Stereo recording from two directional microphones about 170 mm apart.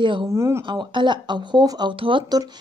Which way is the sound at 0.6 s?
30° right (ahead or behind).